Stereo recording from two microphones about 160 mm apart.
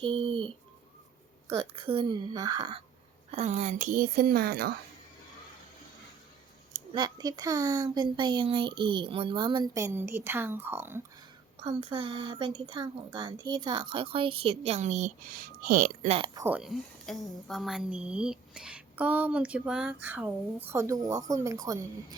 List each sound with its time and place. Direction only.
0.0 s speech: 35° right (ahead or behind)
3.3 s speech: 45° right (ahead or behind); by 4.7 s 80° right
6.9 s speech: 25° right (ahead or behind)
9.7 s a woman's voice: 15° right (ahead or behind)
11.8 s speech: 35° right (ahead or behind); by 15.9 s 65° right (ahead or behind)
16.0 s speech: 35° right (ahead or behind)
16.3 s a woman's voice: 15° right (ahead or behind)